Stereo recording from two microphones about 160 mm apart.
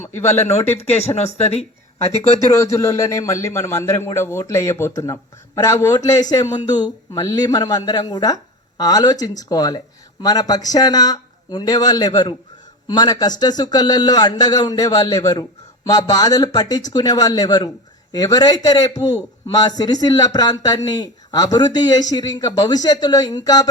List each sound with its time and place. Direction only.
0.1 s speech: 15° left (ahead or behind)
0.8 s speech: 40° left (ahead or behind)
2.5 s a man's voice: 20° left (ahead or behind)